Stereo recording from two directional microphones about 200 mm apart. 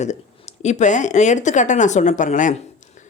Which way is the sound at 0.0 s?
35° left (ahead or behind).